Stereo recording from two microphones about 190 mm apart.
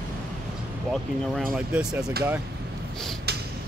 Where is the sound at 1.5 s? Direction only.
5° right (ahead or behind).